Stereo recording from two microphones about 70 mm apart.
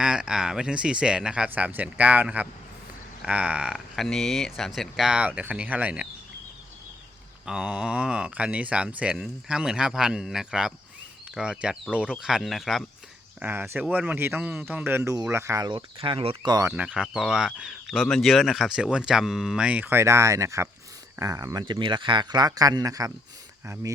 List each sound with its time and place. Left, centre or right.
0.0 s speech: centre
1.5 s speech: right
3.9 s speech: centre
5.1 s speech: centre
7.4 s speech: centre
13.4 s speech: right
15.3 s speech: right
16.7 s speech: centre
17.7 s speech: centre
19.6 s speech: right
19.9 s speech: right